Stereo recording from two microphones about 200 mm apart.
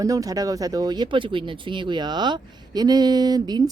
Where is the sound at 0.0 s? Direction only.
15° right (ahead or behind).